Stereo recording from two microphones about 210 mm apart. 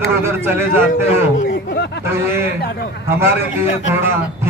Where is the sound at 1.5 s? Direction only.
55° left (ahead or behind).